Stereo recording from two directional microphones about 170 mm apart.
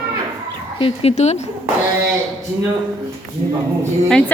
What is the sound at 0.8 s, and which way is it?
Speech, 40° left (ahead or behind).